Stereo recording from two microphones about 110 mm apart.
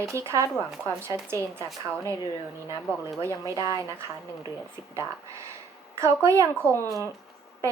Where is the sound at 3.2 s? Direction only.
25° right (ahead or behind).